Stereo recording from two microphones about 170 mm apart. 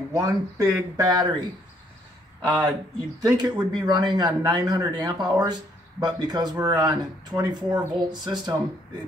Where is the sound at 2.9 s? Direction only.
20° right (ahead or behind).